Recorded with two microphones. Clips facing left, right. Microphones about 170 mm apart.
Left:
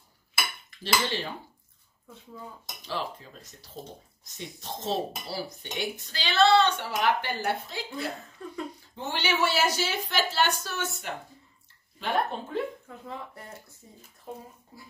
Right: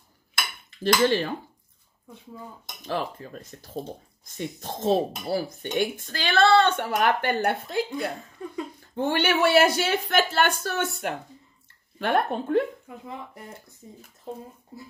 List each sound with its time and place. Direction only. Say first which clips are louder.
1.0 s speech: right 10 dB; 55° right (ahead or behind)
2.8 s speech: right 5 dB; 50° right (ahead or behind)
8.4 s speech: right 4 dB; 15° right (ahead or behind)
8.9 s speech: right 7 dB; 55° right (ahead or behind)
12.8 s speech: right 1 dB; 15° right (ahead or behind)